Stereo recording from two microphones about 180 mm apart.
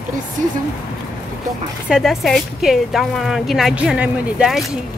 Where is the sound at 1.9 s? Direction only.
Centre (ahead or behind).